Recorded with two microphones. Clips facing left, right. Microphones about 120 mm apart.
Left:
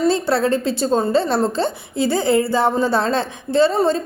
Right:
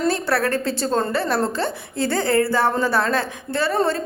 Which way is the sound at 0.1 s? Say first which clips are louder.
Left 4 dB; 20° left (ahead or behind).